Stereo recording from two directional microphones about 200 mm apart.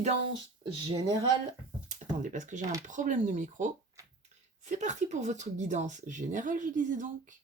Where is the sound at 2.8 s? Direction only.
40° right (ahead or behind).